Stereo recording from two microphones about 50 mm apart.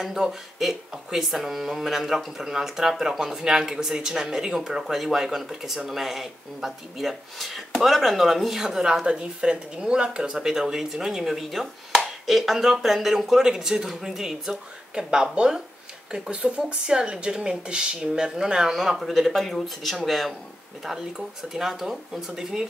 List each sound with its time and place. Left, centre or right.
0.0 s speech: centre